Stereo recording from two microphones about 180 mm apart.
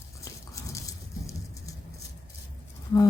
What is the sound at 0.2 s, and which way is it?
Horse, 20° left (ahead or behind).